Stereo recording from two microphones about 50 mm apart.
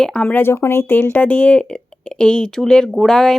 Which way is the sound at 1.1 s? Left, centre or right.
Left.